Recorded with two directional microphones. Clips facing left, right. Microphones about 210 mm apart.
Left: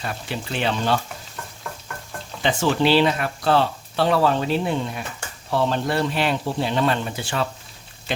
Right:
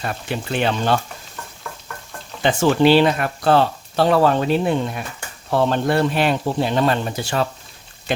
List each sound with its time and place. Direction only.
0.0 s speech: 50° right (ahead or behind)
2.4 s speech: 50° right (ahead or behind)